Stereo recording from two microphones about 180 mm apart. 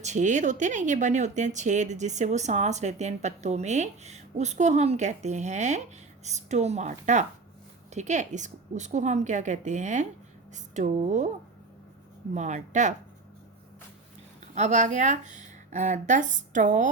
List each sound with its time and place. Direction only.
0.0 s a woman's voice: 40° right (ahead or behind)
12.3 s speech: 40° right (ahead or behind)
14.5 s speech: 40° right (ahead or behind)